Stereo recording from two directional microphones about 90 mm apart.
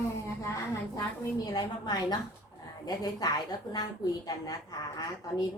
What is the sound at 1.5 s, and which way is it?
A woman's voice, 50° left (ahead or behind).